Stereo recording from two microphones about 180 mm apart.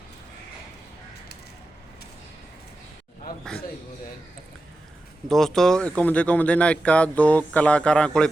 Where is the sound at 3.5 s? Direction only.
5° left (ahead or behind).